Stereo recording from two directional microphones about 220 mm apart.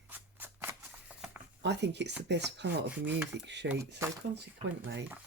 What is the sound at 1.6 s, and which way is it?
Speech, 50° right (ahead or behind).